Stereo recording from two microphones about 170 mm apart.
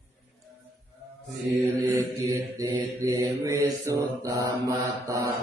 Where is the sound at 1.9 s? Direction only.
20° right (ahead or behind).